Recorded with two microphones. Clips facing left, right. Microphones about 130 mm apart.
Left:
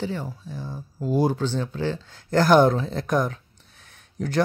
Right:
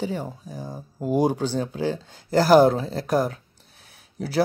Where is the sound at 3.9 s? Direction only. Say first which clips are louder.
Left 2 dB; 5° right (ahead or behind).